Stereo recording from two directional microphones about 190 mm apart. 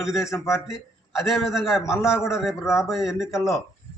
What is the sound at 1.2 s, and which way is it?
Speech, centre (ahead or behind).